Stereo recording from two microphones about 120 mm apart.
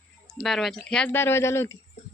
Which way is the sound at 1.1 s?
20° left (ahead or behind).